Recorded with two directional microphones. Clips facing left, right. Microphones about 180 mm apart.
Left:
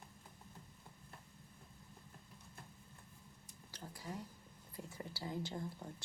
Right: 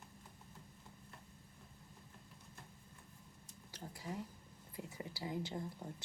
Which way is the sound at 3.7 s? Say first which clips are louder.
Right 2 dB; 15° right (ahead or behind).